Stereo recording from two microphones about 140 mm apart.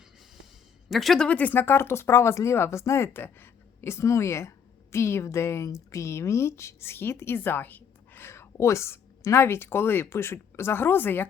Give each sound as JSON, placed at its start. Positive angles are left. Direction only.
{"t": 0.9, "sound": "speech", "side_deg": 0}